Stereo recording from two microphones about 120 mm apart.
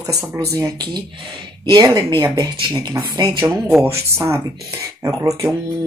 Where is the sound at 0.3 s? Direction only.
30° right (ahead or behind).